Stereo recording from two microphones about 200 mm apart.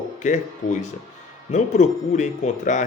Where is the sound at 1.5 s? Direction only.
35° left (ahead or behind).